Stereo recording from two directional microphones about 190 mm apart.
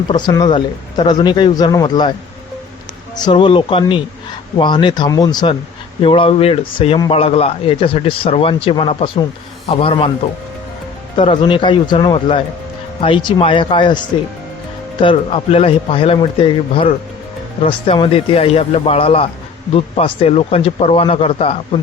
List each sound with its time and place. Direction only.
0.1 s a man's voice: 20° left (ahead or behind)
3.2 s a man's voice: 25° left (ahead or behind)
11.2 s a man's voice: 25° left (ahead or behind)
15.0 s a man's voice: 30° left (ahead or behind)